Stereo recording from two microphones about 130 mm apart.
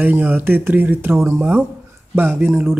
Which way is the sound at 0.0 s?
15° right (ahead or behind).